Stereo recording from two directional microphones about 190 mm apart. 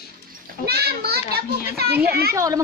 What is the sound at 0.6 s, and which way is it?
A child's voice, 55° right (ahead or behind).